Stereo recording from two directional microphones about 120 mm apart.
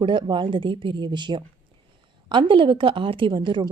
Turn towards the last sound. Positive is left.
turn(degrees=-40)  # may be behind; listen again after turning